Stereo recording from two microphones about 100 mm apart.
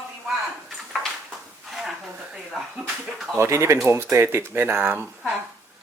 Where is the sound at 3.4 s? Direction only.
30° right (ahead or behind).